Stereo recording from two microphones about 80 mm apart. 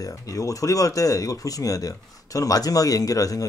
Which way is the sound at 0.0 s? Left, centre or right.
Left.